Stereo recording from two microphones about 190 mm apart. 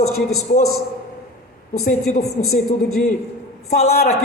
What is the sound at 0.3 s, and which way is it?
Speech, 55° left (ahead or behind).